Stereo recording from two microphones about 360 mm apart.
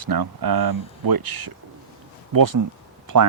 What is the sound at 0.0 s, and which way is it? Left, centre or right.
Speech, right.